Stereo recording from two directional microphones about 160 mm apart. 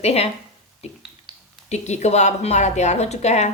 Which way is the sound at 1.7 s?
45° left (ahead or behind).